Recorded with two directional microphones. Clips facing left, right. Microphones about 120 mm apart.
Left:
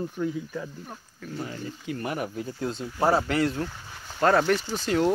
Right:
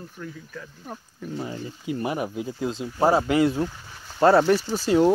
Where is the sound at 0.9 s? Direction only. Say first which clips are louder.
Right 4 dB; 15° right (ahead or behind).